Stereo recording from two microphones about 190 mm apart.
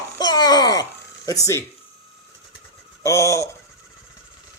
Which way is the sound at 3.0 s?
15° left (ahead or behind).